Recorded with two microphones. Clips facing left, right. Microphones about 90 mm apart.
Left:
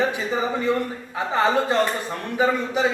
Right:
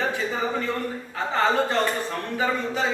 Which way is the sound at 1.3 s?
15° left (ahead or behind).